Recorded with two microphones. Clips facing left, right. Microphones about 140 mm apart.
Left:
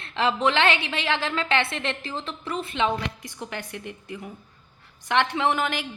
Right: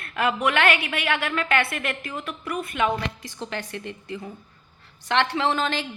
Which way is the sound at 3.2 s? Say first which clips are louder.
Right 2 dB; 15° left (ahead or behind).